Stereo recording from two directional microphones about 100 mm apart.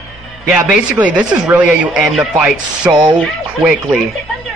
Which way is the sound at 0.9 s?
10° right (ahead or behind).